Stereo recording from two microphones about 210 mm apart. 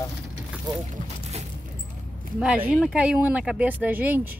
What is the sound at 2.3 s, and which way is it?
Speech, 5° right (ahead or behind).